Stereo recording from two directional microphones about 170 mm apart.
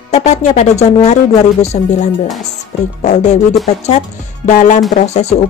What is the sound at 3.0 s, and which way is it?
Speech, 45° left (ahead or behind).